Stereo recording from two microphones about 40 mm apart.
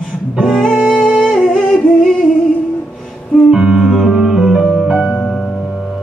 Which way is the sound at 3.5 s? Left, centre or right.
Centre.